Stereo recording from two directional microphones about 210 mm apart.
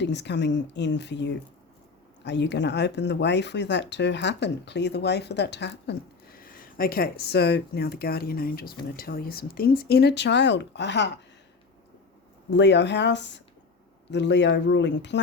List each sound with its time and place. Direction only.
0.0 s speech: 55° left (ahead or behind)
12.5 s speech: 55° left (ahead or behind)